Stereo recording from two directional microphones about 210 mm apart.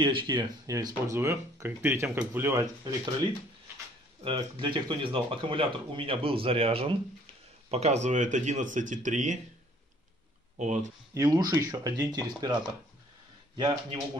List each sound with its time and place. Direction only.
0.0 s speech: 25° right (ahead or behind)
4.2 s speech: 25° right (ahead or behind)
10.6 s speech: 35° right (ahead or behind)
11.1 s speech: 15° right (ahead or behind)